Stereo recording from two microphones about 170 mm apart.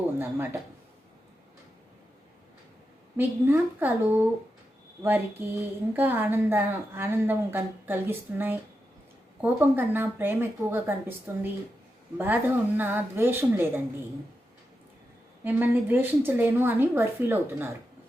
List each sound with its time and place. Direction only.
3.2 s speech: 10° right (ahead or behind)
15.4 s speech: 10° right (ahead or behind)